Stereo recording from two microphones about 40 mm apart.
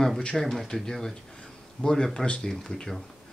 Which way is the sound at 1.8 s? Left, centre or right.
Left.